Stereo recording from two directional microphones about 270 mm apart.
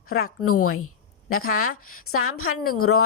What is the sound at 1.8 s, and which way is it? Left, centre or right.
A woman's voice, left.